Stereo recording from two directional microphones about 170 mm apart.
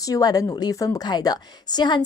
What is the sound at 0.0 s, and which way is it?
A woman's voice, 20° left (ahead or behind).